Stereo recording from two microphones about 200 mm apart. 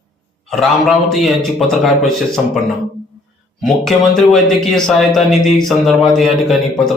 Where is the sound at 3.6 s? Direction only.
Centre (ahead or behind).